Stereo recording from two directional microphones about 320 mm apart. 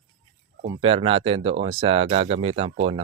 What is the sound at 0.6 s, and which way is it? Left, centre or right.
Speech, centre.